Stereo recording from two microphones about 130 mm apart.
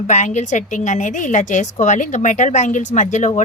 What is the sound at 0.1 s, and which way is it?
Speech, 65° left (ahead or behind).